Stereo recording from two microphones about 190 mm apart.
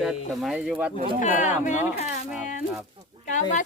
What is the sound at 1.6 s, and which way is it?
Speech, 40° left (ahead or behind).